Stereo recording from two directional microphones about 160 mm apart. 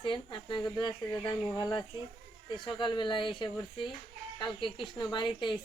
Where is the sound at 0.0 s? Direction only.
30° left (ahead or behind).